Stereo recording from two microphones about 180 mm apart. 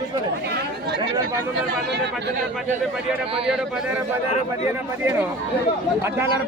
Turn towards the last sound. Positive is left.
turn(degrees=-15)  # may be behind; listen again after turning